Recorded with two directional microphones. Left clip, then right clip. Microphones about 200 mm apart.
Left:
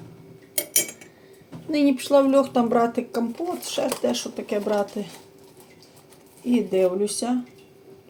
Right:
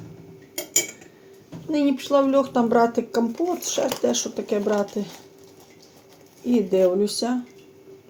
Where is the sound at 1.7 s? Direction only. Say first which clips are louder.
Left 1 dB; 5° right (ahead or behind).